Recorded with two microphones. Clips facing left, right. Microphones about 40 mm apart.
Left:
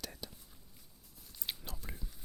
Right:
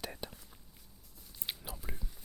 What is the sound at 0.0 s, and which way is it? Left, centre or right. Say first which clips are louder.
Whispering: right 4 dB; right.